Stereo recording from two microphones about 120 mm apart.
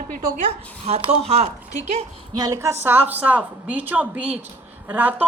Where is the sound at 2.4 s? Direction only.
25° right (ahead or behind).